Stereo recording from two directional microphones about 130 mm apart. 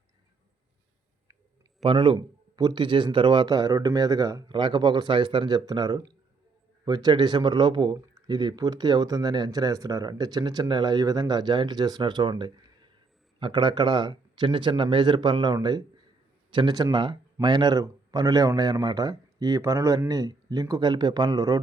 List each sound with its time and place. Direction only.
1.8 s speech: 40° right (ahead or behind)